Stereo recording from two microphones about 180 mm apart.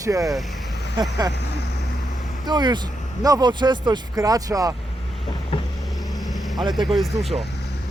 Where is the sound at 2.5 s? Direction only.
25° right (ahead or behind).